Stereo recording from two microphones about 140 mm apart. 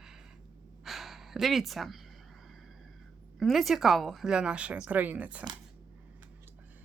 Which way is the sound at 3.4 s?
Centre (ahead or behind).